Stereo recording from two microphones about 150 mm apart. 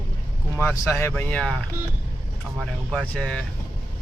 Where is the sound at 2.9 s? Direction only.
5° left (ahead or behind).